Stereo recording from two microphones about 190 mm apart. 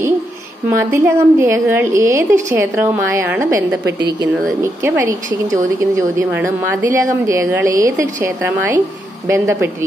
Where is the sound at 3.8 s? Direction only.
60° right (ahead or behind).